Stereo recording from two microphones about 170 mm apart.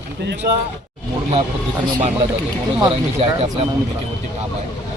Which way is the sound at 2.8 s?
35° right (ahead or behind).